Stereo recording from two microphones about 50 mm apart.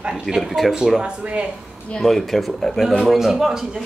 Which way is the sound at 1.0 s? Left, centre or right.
Right.